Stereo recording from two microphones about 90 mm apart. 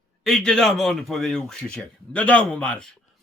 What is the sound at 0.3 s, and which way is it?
A man's voice, 5° left (ahead or behind).